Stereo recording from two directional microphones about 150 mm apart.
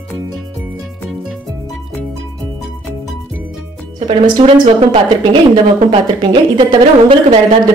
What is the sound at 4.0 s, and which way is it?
Speech, 35° right (ahead or behind).